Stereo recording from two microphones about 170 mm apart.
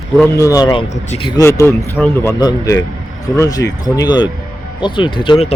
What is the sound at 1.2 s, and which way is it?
Speech, 20° left (ahead or behind).